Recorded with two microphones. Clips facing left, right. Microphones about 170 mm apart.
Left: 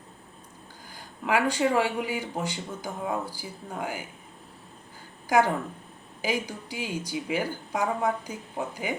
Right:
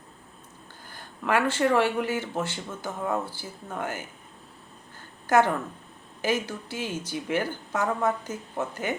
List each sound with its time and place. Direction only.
0.9 s speech: 10° left (ahead or behind)
5.2 s a woman's voice: 10° left (ahead or behind)